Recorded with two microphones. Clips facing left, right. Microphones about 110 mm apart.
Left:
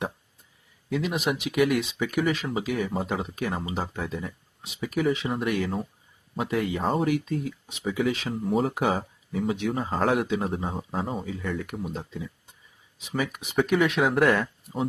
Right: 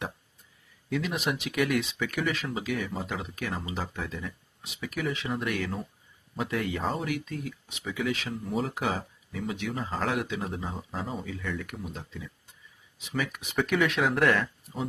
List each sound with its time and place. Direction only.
1.1 s speech: 15° left (ahead or behind)
8.3 s speech: 45° left (ahead or behind)
8.7 s speech: 25° left (ahead or behind)
14.4 s speech: 30° left (ahead or behind)